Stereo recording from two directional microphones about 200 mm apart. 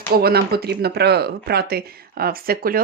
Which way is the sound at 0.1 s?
50° right (ahead or behind).